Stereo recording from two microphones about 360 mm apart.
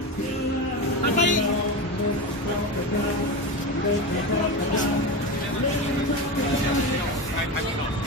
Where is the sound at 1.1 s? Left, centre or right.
Left.